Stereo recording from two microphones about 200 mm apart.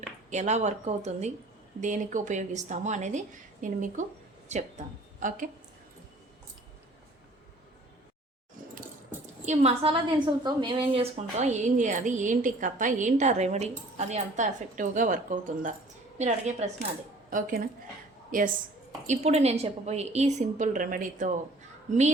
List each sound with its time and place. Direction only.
0.3 s a woman's voice: 35° right (ahead or behind)
9.5 s a woman's voice: 30° right (ahead or behind)